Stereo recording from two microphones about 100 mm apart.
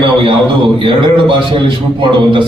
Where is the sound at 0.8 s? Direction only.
55° right (ahead or behind).